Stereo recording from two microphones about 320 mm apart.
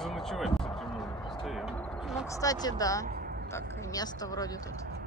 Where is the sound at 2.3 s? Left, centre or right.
Centre.